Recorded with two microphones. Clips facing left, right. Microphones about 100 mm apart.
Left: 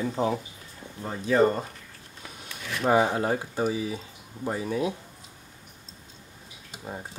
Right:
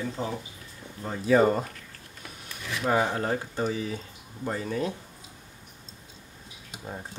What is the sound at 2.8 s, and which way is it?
Speech, 15° left (ahead or behind).